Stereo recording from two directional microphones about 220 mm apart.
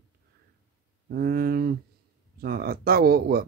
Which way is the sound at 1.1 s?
45° right (ahead or behind).